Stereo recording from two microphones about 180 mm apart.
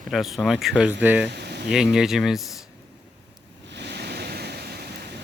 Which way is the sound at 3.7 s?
70° right (ahead or behind).